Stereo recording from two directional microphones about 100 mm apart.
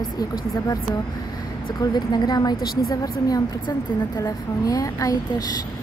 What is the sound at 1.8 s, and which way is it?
A woman's voice, 40° left (ahead or behind).